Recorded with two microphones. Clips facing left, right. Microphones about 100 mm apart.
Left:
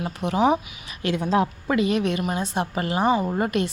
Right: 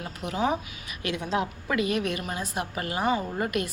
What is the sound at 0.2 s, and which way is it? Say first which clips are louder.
A woman's voice: left 6 dB; 30° left (ahead or behind).